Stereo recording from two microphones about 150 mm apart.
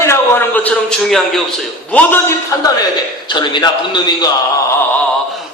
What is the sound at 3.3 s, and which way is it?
Speech, 30° left (ahead or behind).